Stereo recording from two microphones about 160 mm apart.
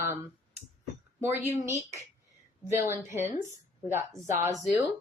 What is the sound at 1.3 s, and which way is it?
Speech, 10° right (ahead or behind).